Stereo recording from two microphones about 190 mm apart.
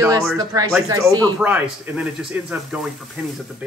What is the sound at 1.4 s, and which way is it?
A man's voice, 5° right (ahead or behind).